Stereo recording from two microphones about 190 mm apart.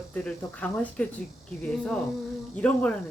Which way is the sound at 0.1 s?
5° left (ahead or behind).